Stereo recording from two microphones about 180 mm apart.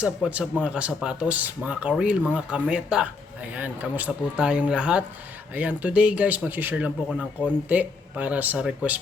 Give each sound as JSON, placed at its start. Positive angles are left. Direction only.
{"t": 0.0, "sound": "speech", "side_deg": -5}